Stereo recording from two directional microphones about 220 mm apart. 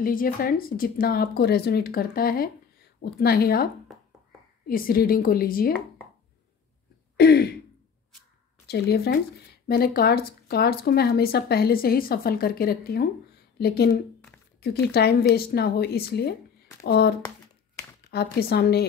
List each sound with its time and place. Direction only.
0.0 s a woman's voice: 40° left (ahead or behind)
7.2 s speech: 45° left (ahead or behind)
8.6 s speech: 45° left (ahead or behind)
18.1 s speech: 45° left (ahead or behind)